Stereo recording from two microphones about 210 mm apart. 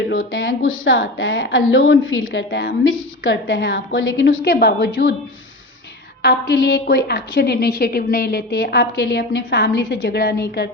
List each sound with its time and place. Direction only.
0.2 s a woman's voice: 50° left (ahead or behind)
2.3 s a woman's voice: 55° left (ahead or behind)
6.2 s a woman's voice: 50° left (ahead or behind)